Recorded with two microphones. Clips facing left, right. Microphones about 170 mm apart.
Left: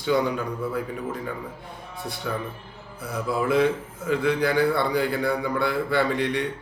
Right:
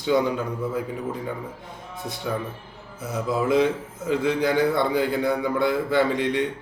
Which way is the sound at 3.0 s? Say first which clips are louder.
Right 1 dB; 20° right (ahead or behind).